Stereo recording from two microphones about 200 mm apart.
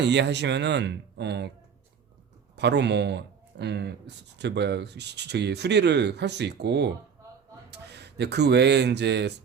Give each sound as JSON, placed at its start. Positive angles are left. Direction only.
{"t": 0.0, "sound": "speech", "side_deg": -60}
{"t": 2.6, "sound": "speech", "side_deg": -60}